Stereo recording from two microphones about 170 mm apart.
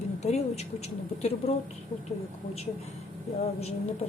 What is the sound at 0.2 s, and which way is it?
Speech, 40° left (ahead or behind).